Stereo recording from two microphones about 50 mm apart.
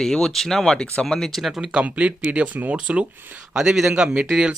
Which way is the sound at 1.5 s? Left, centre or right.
Centre.